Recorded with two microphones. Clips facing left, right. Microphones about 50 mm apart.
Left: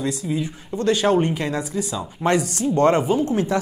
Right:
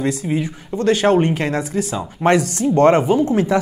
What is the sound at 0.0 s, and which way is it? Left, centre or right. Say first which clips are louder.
Speech: right 4 dB; right.